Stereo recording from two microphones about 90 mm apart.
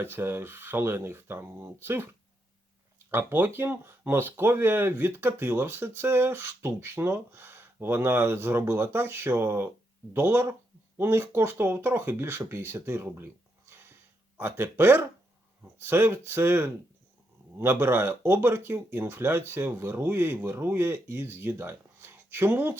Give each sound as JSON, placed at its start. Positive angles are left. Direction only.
{"t": 0.0, "sound": "speech", "side_deg": -25}
{"t": 3.1, "sound": "speech", "side_deg": -25}